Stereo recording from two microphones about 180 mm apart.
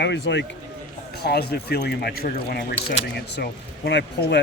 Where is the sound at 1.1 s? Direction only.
60° left (ahead or behind).